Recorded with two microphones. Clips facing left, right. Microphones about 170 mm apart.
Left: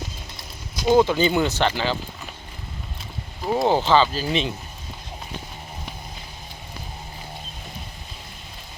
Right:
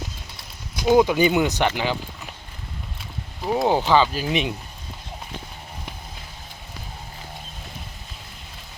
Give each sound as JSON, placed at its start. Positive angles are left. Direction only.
{"t": 0.9, "sound": "speech", "side_deg": -10}
{"t": 3.4, "sound": "speech", "side_deg": 0}